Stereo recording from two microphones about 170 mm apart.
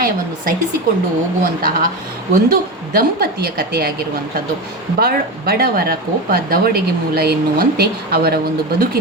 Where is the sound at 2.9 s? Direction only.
60° right (ahead or behind).